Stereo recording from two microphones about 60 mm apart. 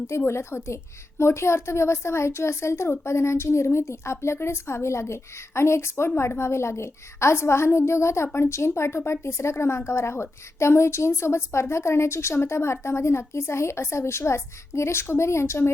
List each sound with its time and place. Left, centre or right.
0.3 s a woman's voice: left